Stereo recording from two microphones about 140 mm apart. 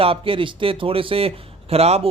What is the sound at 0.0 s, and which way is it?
Speech, 40° right (ahead or behind).